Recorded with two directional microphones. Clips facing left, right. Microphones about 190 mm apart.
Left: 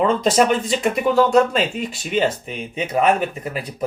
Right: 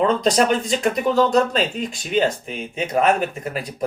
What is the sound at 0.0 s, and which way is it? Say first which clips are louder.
Speech: left 1 dB; 5° left (ahead or behind).